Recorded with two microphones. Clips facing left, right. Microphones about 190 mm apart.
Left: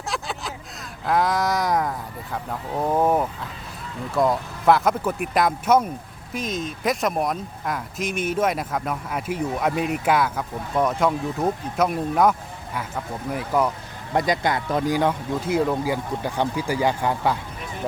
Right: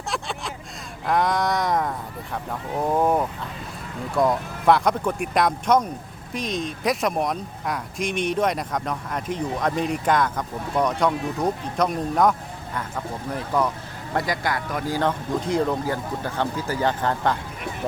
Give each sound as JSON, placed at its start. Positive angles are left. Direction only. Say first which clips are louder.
{"t": 0.1, "sound": "vehicle", "louder": "even", "side_deg": 0}
{"t": 1.0, "sound": "speech", "louder": "even", "side_deg": 0}
{"t": 14.1, "sound": "speech", "louder": "left 3 dB", "side_deg": 20}
{"t": 14.9, "sound": "speech", "louder": "left 1 dB", "side_deg": 10}